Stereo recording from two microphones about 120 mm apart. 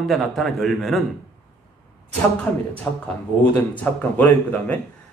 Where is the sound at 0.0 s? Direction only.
Centre (ahead or behind).